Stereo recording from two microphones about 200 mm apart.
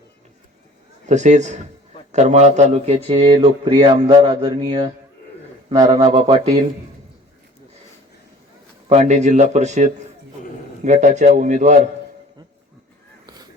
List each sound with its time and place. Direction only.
1.0 s speech: 35° right (ahead or behind); by 6.1 s 20° right (ahead or behind)
6.1 s speech: 30° right (ahead or behind)
8.9 s speech: 35° right (ahead or behind)
13.2 s vehicle: 20° right (ahead or behind)